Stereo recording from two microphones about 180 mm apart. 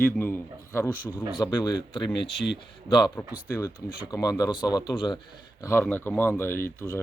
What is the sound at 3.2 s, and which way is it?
Speech, 10° left (ahead or behind).